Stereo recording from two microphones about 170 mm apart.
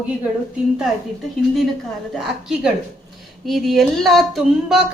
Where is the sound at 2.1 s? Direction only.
5° right (ahead or behind).